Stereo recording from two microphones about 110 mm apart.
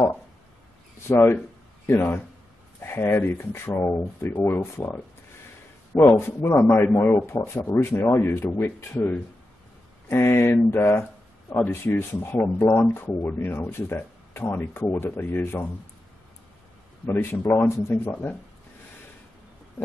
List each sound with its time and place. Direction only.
1.0 s speech: 25° left (ahead or behind)
17.0 s speech: 20° left (ahead or behind)